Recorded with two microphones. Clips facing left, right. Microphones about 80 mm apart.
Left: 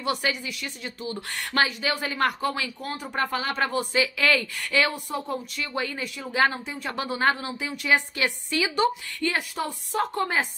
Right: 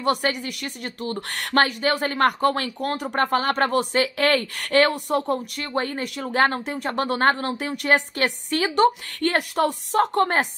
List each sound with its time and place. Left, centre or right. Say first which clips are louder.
0.0 s speech: right 5 dB; right